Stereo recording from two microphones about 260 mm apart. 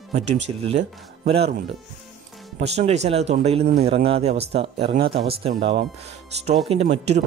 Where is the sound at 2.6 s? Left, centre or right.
Right.